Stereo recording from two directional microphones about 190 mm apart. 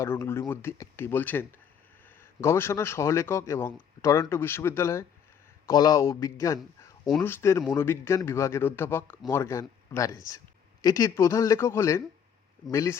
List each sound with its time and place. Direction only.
0.0 s a man's voice: 15° left (ahead or behind)
6.4 s a sound: 15° left (ahead or behind)
7.2 s a man's voice: 15° left (ahead or behind)